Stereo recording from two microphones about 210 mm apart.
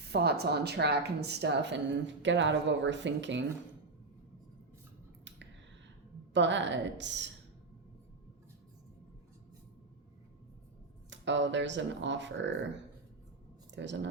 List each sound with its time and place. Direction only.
0.0 s speech: 50° right (ahead or behind)
6.3 s speech: 60° right (ahead or behind)
11.1 s speech: 60° right (ahead or behind)